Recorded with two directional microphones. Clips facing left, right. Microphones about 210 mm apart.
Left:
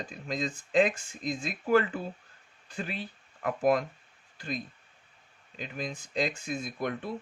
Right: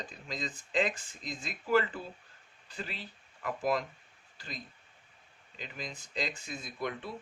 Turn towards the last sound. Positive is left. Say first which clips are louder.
# left 4 dB
turn(degrees=50)  # may be behind; listen again after turning